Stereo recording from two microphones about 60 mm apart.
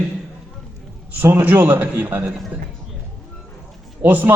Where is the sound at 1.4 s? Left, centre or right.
Right.